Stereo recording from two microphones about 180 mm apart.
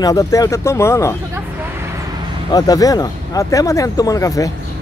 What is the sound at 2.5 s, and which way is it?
Speech, 20° left (ahead or behind).